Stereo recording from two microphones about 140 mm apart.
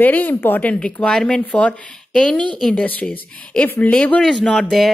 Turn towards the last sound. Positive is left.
turn(degrees=5)  # may be behind; listen again after turning